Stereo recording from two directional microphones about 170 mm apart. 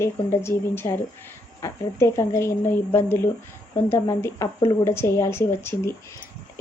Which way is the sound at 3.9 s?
15° left (ahead or behind).